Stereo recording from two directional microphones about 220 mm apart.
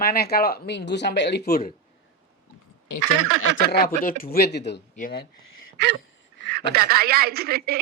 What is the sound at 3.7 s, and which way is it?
A woman's voice, 45° left (ahead or behind).